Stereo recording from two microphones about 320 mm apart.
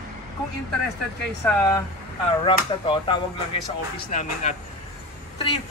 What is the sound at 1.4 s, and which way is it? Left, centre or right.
Speech, centre.